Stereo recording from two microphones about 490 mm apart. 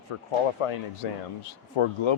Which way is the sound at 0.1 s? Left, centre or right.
Left.